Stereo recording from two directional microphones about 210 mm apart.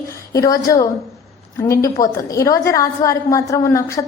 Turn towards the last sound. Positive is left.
turn(degrees=15)  # may be behind; listen again after turning